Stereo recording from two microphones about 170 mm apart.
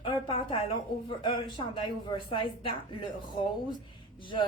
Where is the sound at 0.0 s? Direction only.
30° left (ahead or behind).